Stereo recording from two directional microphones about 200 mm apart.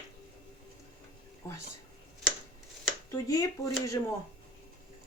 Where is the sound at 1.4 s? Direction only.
15° left (ahead or behind).